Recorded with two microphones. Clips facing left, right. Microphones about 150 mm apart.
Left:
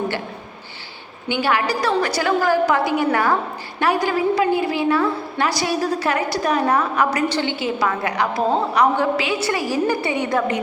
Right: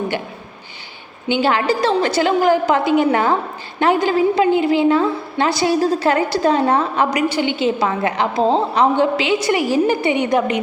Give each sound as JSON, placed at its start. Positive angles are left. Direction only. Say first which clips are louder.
{"t": 1.3, "sound": "a woman's voice", "louder": "right 4 dB", "side_deg": -25}
{"t": 7.1, "sound": "a woman's voice", "louder": "right 3 dB", "side_deg": -15}
{"t": 7.5, "sound": "a woman's voice", "louder": "right 4 dB", "side_deg": -25}